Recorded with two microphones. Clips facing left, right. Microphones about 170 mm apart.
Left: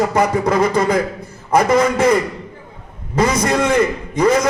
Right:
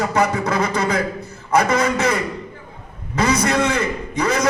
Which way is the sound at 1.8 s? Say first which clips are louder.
Left 5 dB; 30° left (ahead or behind).